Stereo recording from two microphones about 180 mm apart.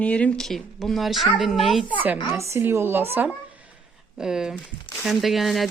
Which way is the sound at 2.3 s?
15° right (ahead or behind).